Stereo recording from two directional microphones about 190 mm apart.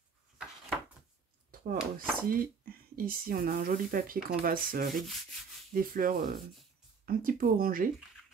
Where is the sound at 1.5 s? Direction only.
50° right (ahead or behind).